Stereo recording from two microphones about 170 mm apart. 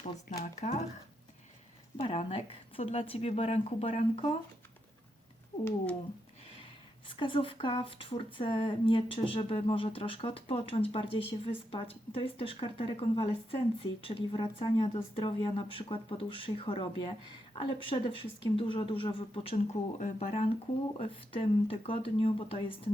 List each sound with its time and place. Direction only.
0.0 s speech: 50° left (ahead or behind)
2.0 s speech: 35° left (ahead or behind)
5.6 s speech: 5° left (ahead or behind)
7.1 s speech: 30° left (ahead or behind)